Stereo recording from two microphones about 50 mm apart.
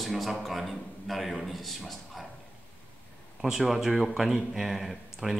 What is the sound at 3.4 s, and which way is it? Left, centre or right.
Speech, centre.